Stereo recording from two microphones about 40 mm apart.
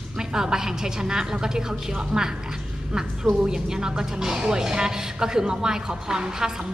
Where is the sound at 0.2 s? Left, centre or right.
Centre.